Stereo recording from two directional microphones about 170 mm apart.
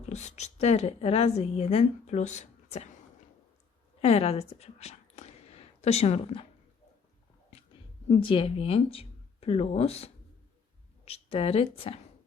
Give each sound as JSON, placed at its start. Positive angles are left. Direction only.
{"t": 0.0, "sound": "a woman's voice", "side_deg": 40}
{"t": 4.0, "sound": "a woman's voice", "side_deg": 35}
{"t": 8.1, "sound": "a woman's voice", "side_deg": 30}